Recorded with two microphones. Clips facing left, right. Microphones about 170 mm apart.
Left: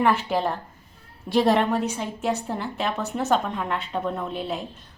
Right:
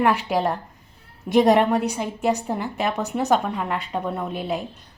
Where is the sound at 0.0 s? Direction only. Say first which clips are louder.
Right 2 dB; 15° right (ahead or behind).